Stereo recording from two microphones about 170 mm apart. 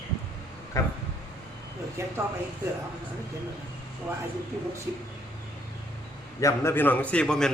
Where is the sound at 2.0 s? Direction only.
15° right (ahead or behind).